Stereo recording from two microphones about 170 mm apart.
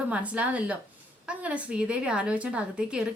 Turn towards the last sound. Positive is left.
turn(degrees=-5)  # may be behind; listen again after turning